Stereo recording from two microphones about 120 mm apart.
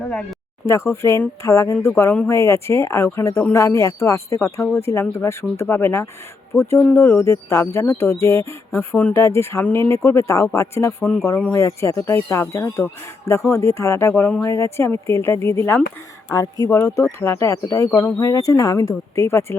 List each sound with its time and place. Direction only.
0.1 s speech: 10° left (ahead or behind)
0.6 s speech: 25° left (ahead or behind)